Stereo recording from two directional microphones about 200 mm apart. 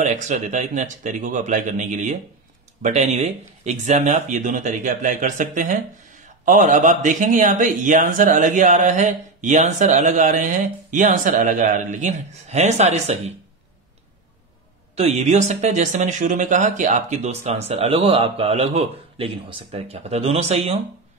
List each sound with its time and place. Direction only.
0.0 s speech: 35° right (ahead or behind)
15.0 s speech: 30° right (ahead or behind)